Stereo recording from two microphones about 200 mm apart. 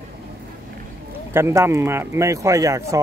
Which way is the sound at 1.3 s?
10° right (ahead or behind).